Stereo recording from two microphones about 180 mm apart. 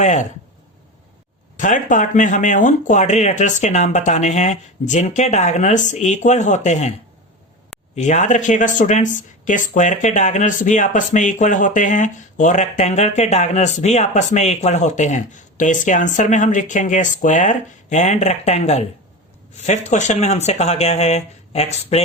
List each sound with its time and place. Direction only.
0.0 s speech: 40° left (ahead or behind)
1.5 s speech: 45° left (ahead or behind)
7.9 s speech: 40° left (ahead or behind)